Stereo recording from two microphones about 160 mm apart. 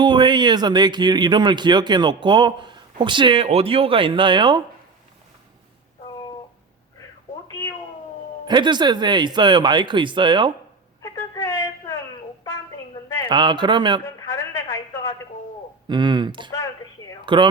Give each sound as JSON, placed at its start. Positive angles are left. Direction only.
{"t": 0.0, "sound": "speech", "side_deg": -30}
{"t": 7.4, "sound": "cat", "side_deg": 20}
{"t": 8.4, "sound": "speech", "side_deg": -30}
{"t": 11.0, "sound": "a sound", "side_deg": 25}
{"t": 13.2, "sound": "speech", "side_deg": -30}
{"t": 15.9, "sound": "speech", "side_deg": -30}